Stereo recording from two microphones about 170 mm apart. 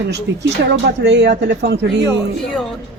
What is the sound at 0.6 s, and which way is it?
Speech, 85° right.